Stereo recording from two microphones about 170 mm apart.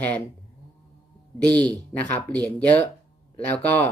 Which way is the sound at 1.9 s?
10° left (ahead or behind).